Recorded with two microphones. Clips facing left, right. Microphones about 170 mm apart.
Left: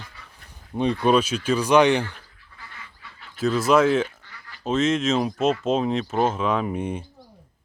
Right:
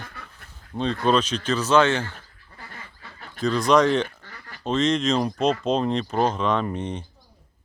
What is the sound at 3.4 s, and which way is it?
Speech, 5° left (ahead or behind).